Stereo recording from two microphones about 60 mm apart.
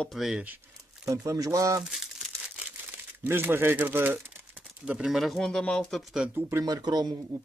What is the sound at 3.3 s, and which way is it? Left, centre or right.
Speech, right.